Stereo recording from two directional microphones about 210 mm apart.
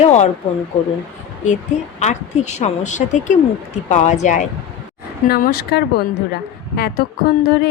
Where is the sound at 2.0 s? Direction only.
35° left (ahead or behind).